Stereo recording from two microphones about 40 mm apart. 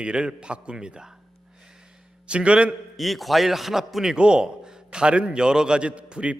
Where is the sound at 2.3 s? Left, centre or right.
Right.